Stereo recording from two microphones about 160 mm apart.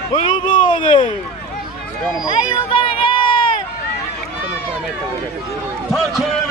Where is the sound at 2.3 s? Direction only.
30° left (ahead or behind).